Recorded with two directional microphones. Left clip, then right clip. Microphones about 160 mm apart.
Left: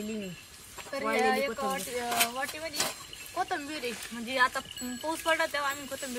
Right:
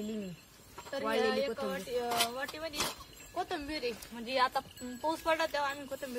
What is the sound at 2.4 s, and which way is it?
Speech, 40° right (ahead or behind).